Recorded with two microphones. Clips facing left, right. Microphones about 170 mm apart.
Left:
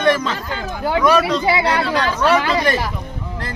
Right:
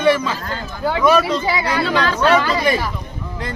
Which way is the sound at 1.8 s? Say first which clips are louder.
Right 1 dB; 80° right.